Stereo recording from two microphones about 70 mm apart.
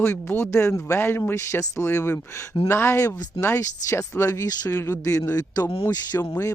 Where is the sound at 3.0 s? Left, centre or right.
Left.